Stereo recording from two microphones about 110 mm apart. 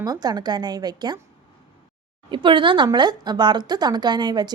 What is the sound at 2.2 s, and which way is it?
A woman's voice, 45° right (ahead or behind).